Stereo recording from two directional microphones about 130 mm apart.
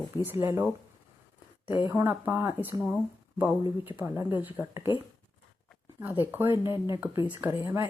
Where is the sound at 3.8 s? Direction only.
15° right (ahead or behind).